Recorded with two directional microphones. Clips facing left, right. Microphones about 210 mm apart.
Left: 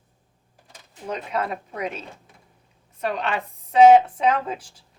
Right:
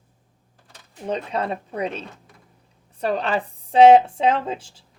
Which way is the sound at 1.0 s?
30° right (ahead or behind).